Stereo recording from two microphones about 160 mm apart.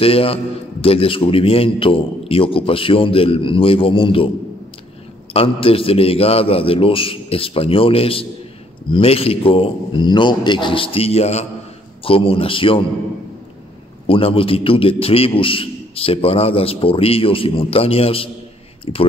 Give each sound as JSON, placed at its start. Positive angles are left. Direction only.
{"t": 0.0, "sound": "a man's voice", "side_deg": 35}
{"t": 5.3, "sound": "a man's voice", "side_deg": 35}
{"t": 14.0, "sound": "a man's voice", "side_deg": 35}